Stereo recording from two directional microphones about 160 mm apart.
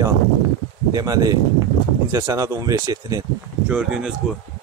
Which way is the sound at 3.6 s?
5° right (ahead or behind).